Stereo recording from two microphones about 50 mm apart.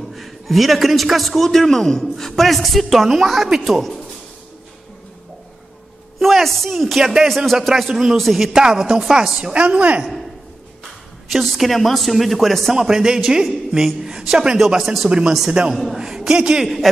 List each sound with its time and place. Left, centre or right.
0.1 s a man's voice: centre
6.1 s a man's voice: centre
8.5 s a man's voice: centre
9.5 s a woman's voice: right
11.3 s a man's voice: centre
12.7 s a man's voice: centre
14.8 s a man's voice: centre
15.0 s a woman's voice: centre
15.7 s a man's voice: centre
16.0 s a man's voice: centre
16.6 s a man's voice: centre